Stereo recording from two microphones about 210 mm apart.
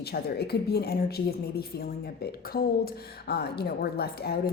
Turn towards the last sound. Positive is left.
turn(degrees=50)  # may be behind; listen again after turning